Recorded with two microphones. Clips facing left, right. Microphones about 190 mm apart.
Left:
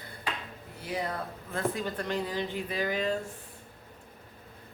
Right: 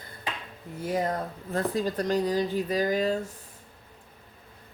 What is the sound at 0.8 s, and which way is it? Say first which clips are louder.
Humming: right 6 dB; 45° right (ahead or behind).